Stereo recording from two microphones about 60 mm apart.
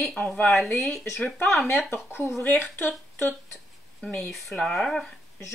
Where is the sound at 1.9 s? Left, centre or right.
Left.